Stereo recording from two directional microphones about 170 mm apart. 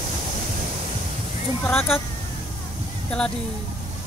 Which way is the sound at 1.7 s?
15° left (ahead or behind).